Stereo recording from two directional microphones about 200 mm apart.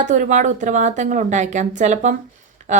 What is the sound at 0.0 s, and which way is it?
Speech, 40° right (ahead or behind).